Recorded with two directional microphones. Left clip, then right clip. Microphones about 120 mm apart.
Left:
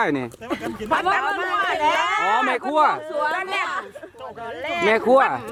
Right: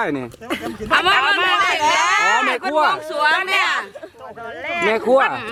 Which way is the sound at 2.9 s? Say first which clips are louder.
Right 6 dB; 35° right (ahead or behind).